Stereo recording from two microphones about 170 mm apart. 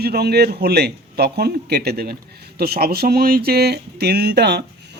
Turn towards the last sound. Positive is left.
turn(degrees=-75)  # may be behind; listen again after turning